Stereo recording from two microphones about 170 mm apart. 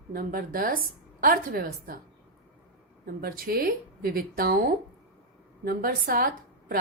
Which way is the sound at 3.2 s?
60° right (ahead or behind).